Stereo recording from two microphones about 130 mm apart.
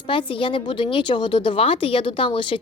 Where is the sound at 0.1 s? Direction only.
40° left (ahead or behind).